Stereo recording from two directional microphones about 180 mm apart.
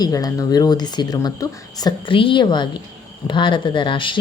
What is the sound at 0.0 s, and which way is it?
A woman's voice, 20° left (ahead or behind).